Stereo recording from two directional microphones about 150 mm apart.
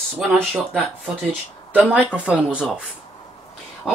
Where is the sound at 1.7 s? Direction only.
10° right (ahead or behind).